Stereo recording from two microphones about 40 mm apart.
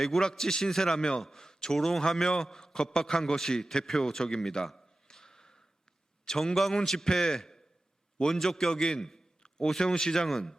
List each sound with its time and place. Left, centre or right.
0.0 s a man's voice: centre
4.5 s a sound: centre
6.2 s a man's voice: centre